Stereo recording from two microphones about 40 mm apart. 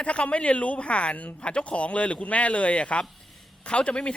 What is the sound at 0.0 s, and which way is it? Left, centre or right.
Speech, left.